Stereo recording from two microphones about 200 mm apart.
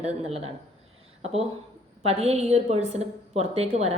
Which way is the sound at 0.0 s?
30° right (ahead or behind).